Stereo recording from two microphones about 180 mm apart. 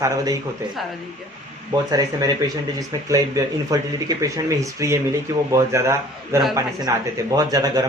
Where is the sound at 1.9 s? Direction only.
20° right (ahead or behind).